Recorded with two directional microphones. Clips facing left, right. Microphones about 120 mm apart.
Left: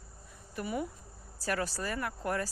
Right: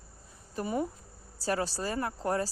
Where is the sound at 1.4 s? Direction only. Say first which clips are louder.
Right 3 dB; 30° right (ahead or behind).